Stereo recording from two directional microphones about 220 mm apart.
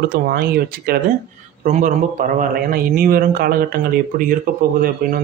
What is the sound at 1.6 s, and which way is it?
A man's voice, 35° right (ahead or behind).